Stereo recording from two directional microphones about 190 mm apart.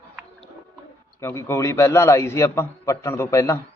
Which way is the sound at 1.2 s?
15° left (ahead or behind).